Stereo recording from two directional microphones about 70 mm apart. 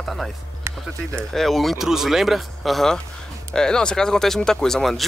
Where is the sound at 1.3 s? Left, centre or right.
Centre.